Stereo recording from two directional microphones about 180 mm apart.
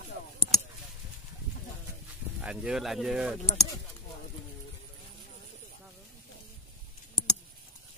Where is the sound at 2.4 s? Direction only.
5° right (ahead or behind).